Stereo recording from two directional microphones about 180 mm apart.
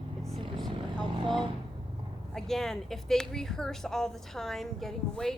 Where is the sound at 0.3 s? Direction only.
30° right (ahead or behind).